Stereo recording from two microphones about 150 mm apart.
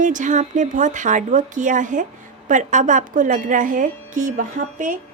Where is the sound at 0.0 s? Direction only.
55° right (ahead or behind).